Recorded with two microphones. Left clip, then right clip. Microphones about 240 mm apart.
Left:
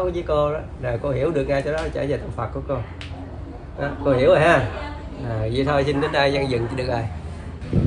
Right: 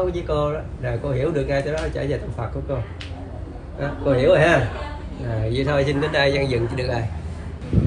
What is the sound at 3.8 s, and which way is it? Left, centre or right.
Speech, centre.